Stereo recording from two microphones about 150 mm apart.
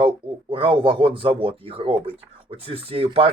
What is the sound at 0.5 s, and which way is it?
Speech, 35° right (ahead or behind).